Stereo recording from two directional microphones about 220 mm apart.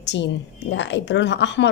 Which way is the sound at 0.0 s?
55° left (ahead or behind).